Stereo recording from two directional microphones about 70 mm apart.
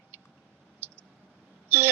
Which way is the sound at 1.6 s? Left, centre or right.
Right.